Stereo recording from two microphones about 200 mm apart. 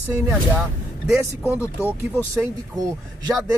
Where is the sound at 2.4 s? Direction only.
15° right (ahead or behind).